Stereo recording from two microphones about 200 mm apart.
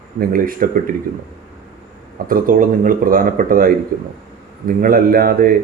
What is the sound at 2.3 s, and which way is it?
Speech, 45° right (ahead or behind).